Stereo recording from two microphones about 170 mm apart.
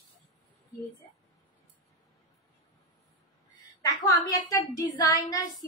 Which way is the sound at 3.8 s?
20° left (ahead or behind).